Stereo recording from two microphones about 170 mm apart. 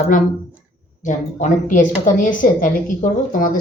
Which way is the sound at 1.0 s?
45° left (ahead or behind).